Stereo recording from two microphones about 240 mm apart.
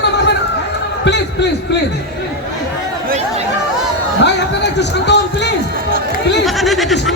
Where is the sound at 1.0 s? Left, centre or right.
Left.